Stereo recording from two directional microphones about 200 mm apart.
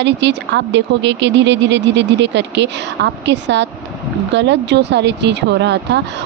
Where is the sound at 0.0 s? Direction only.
60° right (ahead or behind).